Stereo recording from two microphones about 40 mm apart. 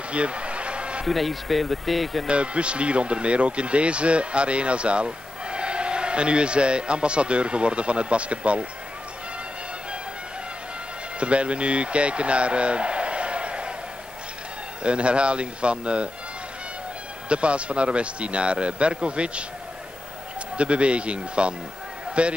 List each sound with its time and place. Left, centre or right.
0.1 s a sound: right
1.0 s speech: centre
2.2 s speech: right
11.1 s speech: right
14.8 s speech: right
17.3 s speech: right
20.5 s speech: right